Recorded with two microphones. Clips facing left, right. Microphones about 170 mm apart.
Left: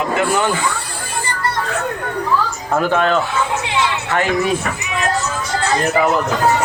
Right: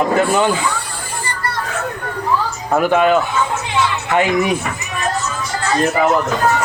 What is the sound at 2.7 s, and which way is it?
Speech, 15° right (ahead or behind).